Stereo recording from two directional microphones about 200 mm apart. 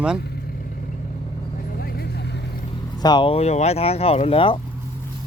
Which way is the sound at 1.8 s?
50° left (ahead or behind).